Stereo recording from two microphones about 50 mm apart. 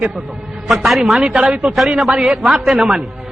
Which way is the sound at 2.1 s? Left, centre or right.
Centre.